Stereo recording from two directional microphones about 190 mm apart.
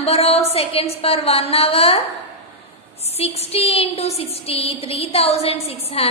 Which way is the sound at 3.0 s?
35° left (ahead or behind).